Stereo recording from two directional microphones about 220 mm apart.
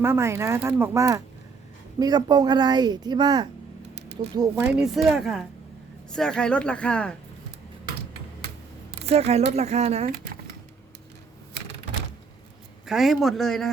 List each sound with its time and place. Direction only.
0.0 s speech: 10° right (ahead or behind)
4.6 s speech: 5° right (ahead or behind)
9.0 s speech: 30° right (ahead or behind)
12.8 s speech: centre (ahead or behind)